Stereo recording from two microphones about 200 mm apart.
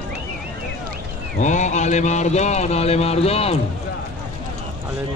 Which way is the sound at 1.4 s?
35° left (ahead or behind).